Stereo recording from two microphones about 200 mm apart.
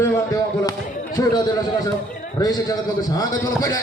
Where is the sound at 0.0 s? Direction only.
15° left (ahead or behind).